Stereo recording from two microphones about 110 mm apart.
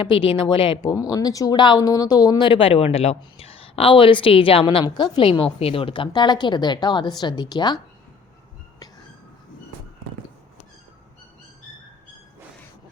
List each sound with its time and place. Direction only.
0.4 s a woman's voice: 50° left (ahead or behind)
0.8 s a woman's voice: 35° left (ahead or behind)
2.5 s a woman's voice: 55° left (ahead or behind); by 7.8 s 40° left (ahead or behind)